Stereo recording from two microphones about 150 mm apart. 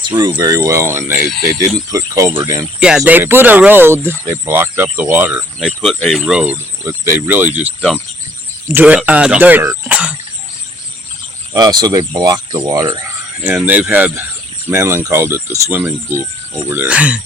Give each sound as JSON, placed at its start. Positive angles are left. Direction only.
{"t": 0.2, "sound": "speech", "side_deg": -25}
{"t": 9.9, "sound": "a sound", "side_deg": -10}
{"t": 11.5, "sound": "speech", "side_deg": -25}
{"t": 13.4, "sound": "speech", "side_deg": -10}